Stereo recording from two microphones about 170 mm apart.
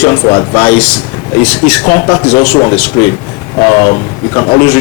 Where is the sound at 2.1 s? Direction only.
30° left (ahead or behind).